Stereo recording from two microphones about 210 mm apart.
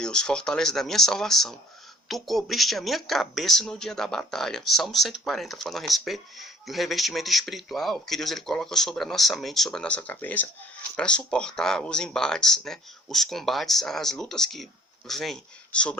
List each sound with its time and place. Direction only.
0.0 s speech: 5° left (ahead or behind)